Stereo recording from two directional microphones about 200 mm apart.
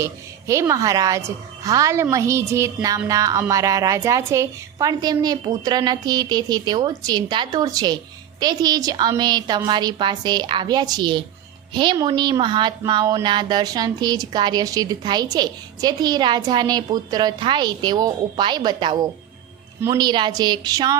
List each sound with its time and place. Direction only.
0.0 s a woman's voice: 15° right (ahead or behind)